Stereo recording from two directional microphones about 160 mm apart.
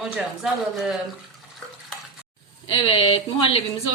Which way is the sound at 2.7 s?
35° left (ahead or behind).